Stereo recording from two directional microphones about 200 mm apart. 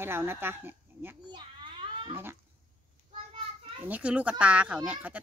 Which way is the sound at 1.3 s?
25° right (ahead or behind).